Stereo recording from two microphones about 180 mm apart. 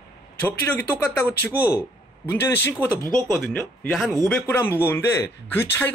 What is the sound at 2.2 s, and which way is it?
Speech, 15° left (ahead or behind).